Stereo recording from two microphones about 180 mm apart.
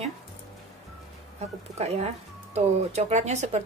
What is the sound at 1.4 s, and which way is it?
Speech, 35° right (ahead or behind).